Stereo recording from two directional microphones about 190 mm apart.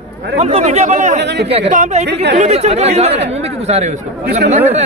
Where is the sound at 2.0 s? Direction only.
60° right (ahead or behind).